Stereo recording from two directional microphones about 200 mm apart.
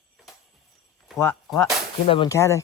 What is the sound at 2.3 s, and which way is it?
Speech, 15° left (ahead or behind).